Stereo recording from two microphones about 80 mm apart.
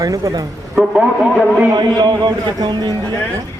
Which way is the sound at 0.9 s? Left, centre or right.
Centre.